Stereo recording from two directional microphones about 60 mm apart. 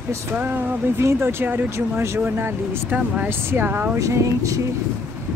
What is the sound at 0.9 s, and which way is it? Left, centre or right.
Speech, right.